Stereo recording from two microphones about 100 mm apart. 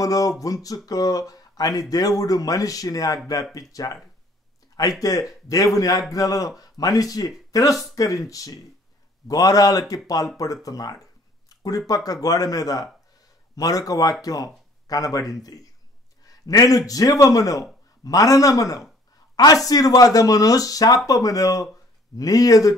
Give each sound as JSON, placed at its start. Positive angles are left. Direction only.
{"t": 0.0, "sound": "a man's voice", "side_deg": 35}